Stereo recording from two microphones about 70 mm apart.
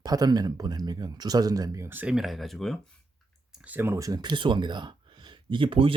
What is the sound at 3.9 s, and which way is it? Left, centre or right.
Speech, right.